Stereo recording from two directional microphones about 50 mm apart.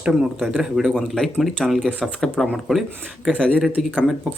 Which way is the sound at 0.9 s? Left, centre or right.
Centre.